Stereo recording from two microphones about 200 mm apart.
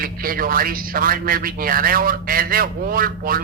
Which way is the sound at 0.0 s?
45° right (ahead or behind).